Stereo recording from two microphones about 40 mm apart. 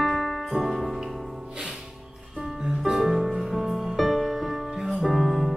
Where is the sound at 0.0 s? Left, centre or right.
Centre.